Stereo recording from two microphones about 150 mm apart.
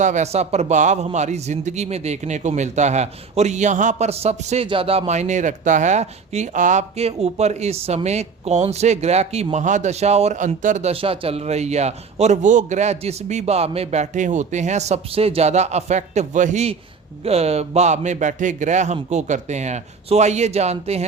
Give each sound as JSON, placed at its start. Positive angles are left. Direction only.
{"t": 0.0, "sound": "a man's voice", "side_deg": -50}